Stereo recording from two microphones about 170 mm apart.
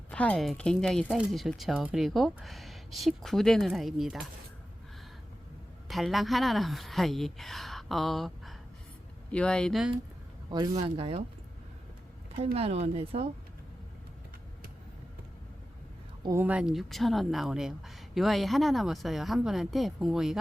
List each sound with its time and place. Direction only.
0.1 s speech: 5° left (ahead or behind)
5.9 s speech: centre (ahead or behind)
10.5 s speech: 30° right (ahead or behind)
12.5 s speech: 35° right (ahead or behind)
16.2 s speech: 15° right (ahead or behind)